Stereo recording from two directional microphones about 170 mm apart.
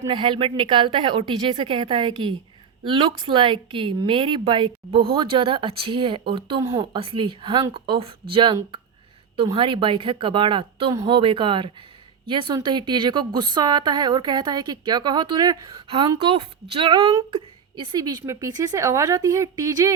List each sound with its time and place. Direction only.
0.0 s speech: 30° right (ahead or behind)